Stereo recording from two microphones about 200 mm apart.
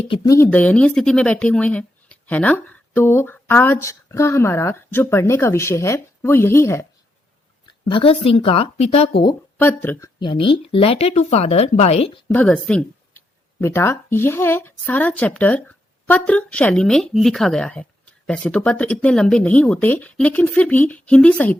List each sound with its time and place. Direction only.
0.0 s speech: 20° left (ahead or behind)
7.9 s speech: 25° left (ahead or behind)
9.6 s speech: 10° left (ahead or behind)
10.2 s speech: 25° left (ahead or behind)
12.3 s speech: 5° left (ahead or behind)